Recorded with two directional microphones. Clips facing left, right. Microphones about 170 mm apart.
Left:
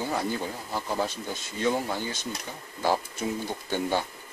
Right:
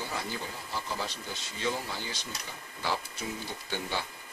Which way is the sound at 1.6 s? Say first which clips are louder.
Left 7 dB; 50° left (ahead or behind).